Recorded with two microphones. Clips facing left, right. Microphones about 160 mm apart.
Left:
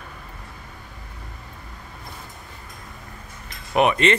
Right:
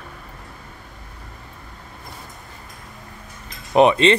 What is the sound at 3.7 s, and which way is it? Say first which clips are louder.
Speech: right 4 dB; 25° right (ahead or behind).